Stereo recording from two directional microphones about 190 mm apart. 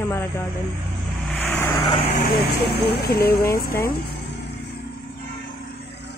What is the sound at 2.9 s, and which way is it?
Speech, 55° left (ahead or behind).